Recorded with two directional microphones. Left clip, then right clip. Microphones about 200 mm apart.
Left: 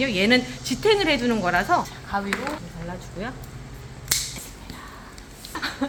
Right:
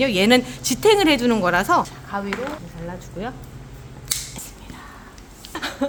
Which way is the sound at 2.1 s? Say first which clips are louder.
Left 1 dB; 25° right (ahead or behind).